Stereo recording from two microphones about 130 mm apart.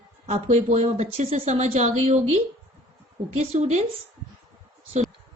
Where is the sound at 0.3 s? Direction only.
60° right (ahead or behind).